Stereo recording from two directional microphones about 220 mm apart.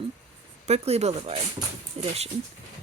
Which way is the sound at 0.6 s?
30° right (ahead or behind).